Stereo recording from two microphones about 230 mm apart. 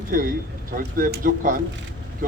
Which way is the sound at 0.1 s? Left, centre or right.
Right.